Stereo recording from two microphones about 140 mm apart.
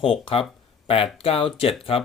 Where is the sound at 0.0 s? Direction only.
45° left (ahead or behind).